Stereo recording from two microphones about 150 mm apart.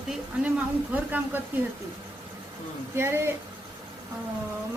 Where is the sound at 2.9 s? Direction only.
15° right (ahead or behind).